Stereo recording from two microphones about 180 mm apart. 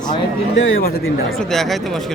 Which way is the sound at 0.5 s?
90° left.